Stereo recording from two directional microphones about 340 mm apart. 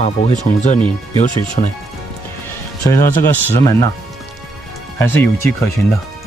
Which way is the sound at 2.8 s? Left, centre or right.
Centre.